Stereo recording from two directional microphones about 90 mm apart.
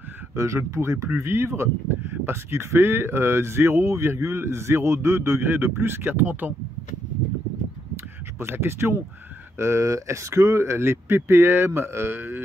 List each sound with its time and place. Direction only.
0.4 s speech: 35° right (ahead or behind)
8.4 s speech: 30° right (ahead or behind)